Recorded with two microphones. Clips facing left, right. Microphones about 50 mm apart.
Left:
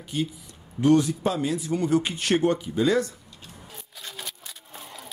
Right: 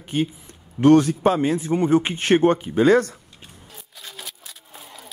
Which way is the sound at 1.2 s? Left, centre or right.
Right.